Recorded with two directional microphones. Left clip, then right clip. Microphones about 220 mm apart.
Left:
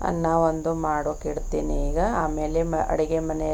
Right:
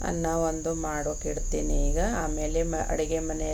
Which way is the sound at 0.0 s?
Centre (ahead or behind).